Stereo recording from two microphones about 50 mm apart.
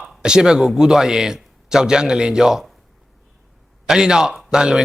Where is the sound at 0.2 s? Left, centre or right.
Centre.